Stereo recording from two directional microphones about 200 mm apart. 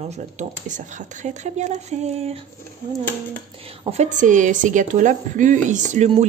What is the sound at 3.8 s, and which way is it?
A woman's voice, 35° right (ahead or behind).